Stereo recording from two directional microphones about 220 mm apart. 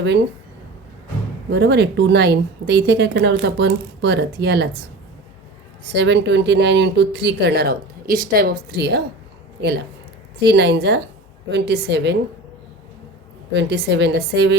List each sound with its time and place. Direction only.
1.5 s a woman's voice: 50° right (ahead or behind)
5.9 s a woman's voice: 50° right (ahead or behind)
10.4 s a woman's voice: 50° right (ahead or behind)
13.5 s a woman's voice: 50° right (ahead or behind)